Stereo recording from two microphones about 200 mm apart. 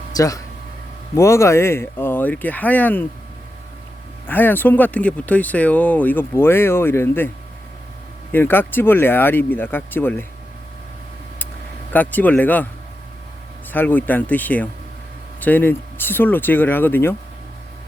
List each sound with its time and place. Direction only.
0.1 s a sound: 15° left (ahead or behind)
1.1 s speech: 15° left (ahead or behind)
4.3 s speech: 10° left (ahead or behind)
8.3 s speech: 10° left (ahead or behind)
11.9 s speech: 10° left (ahead or behind)
13.7 s speech: 10° left (ahead or behind)